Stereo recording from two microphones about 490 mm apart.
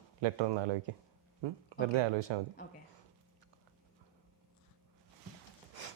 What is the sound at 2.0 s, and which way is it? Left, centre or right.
Speech, right.